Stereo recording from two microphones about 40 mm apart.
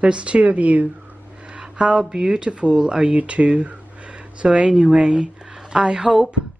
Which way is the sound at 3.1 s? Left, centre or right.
Right.